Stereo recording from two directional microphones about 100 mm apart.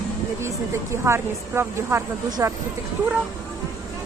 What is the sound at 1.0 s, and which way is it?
Speech, 25° right (ahead or behind).